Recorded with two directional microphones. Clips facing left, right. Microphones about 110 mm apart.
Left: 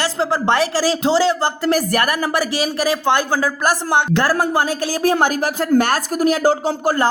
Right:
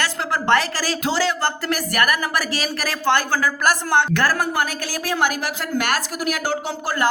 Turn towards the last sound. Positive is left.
turn(degrees=40)  # may be behind; listen again after turning